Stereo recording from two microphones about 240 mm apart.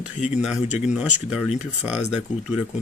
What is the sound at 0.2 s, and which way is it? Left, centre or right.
Speech, centre.